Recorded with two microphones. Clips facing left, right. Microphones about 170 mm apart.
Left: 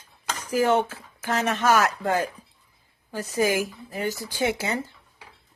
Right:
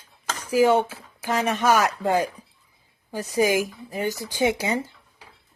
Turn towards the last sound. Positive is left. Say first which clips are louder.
# right 3 dB
turn(degrees=-15)  # may be behind; listen again after turning